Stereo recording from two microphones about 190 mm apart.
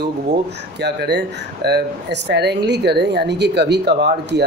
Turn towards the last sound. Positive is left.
turn(degrees=-60)  # may be behind; listen again after turning